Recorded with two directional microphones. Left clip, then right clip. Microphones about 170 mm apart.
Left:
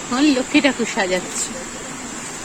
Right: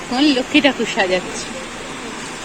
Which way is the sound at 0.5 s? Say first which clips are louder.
Right 2 dB; 70° left (ahead or behind).